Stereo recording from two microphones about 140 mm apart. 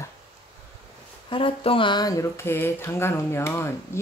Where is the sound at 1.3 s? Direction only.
40° left (ahead or behind).